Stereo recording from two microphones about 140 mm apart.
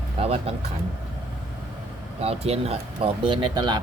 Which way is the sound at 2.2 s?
45° right (ahead or behind).